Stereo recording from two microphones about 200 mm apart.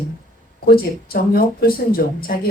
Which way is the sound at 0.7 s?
50° left (ahead or behind).